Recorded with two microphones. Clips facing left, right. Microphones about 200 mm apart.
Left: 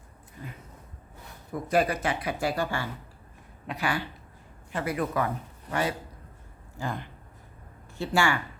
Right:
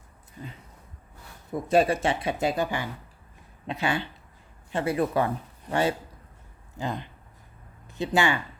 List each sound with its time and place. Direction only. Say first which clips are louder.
1.5 s speech: right 3 dB; 25° right (ahead or behind)
6.7 s speech: right 2 dB; 20° right (ahead or behind)